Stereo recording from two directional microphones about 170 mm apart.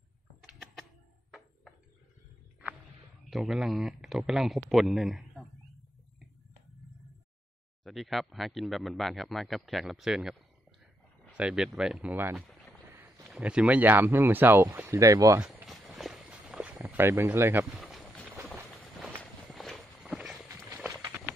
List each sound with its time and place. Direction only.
0.5 s a sound: centre (ahead or behind)
3.3 s speech: centre (ahead or behind)
7.8 s speech: centre (ahead or behind)
11.3 s speech: 5° right (ahead or behind)
12.8 s a sound: 10° right (ahead or behind)
13.3 s speech: 5° right (ahead or behind)
15.4 s walk: centre (ahead or behind)
16.7 s speech: 15° right (ahead or behind)
17.7 s a sound: centre (ahead or behind)
19.5 s walk: centre (ahead or behind)